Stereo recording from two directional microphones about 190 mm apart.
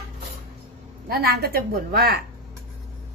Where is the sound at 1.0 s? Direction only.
55° right (ahead or behind).